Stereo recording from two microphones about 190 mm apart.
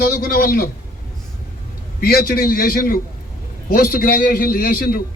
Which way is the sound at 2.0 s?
50° left (ahead or behind).